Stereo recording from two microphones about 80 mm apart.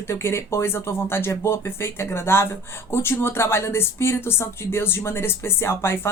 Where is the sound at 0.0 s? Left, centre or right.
Left.